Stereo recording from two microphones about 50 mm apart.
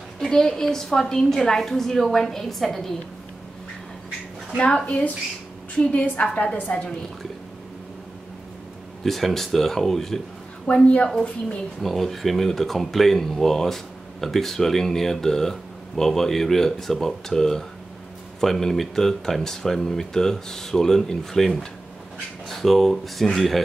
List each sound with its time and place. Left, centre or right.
0.2 s speech: centre
4.8 s a woman's voice: left
9.0 s speech: centre
10.7 s a woman's voice: left
11.8 s speech: centre